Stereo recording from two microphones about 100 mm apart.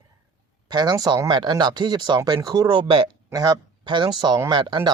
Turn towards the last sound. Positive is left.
turn(degrees=-50)  # may be behind; listen again after turning